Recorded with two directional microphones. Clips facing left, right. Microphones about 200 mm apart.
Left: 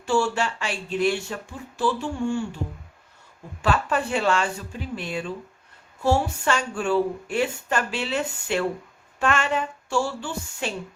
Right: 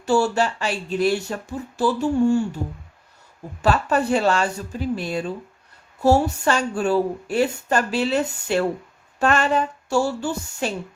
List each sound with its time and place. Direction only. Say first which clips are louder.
0.0 s a woman's voice: right 4 dB; 40° right (ahead or behind)
3.6 s a woman's voice: right 4 dB; 40° right (ahead or behind)